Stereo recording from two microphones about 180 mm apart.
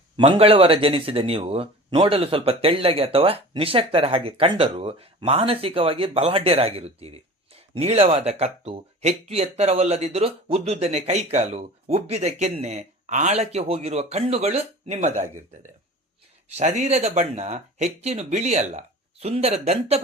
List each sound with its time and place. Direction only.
0.2 s speech: 30° right (ahead or behind)
16.6 s speech: 40° right (ahead or behind)